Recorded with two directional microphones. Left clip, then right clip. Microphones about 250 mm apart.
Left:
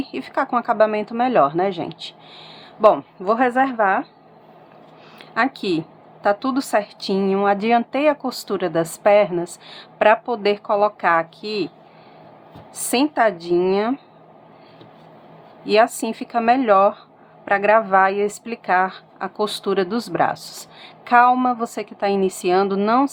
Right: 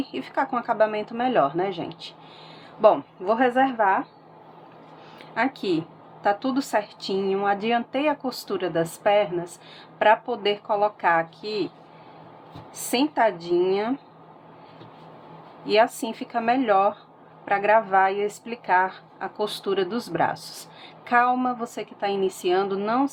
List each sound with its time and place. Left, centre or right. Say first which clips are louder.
0.0 s speech: left 3 dB; left
5.3 s speech: left 4 dB; centre
12.7 s speech: left 4 dB; left
15.6 s speech: left 4 dB; left